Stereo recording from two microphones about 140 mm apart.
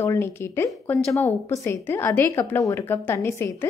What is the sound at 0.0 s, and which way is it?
A woman's voice, 20° left (ahead or behind).